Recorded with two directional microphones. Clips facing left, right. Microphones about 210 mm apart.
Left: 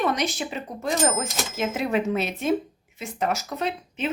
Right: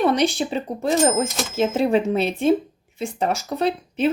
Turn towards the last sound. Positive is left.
turn(degrees=-35)  # may be behind; listen again after turning